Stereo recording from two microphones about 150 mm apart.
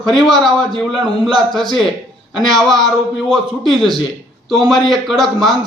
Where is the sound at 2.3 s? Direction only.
Centre (ahead or behind).